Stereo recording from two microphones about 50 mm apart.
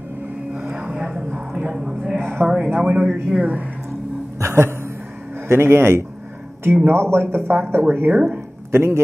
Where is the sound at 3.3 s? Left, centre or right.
Right.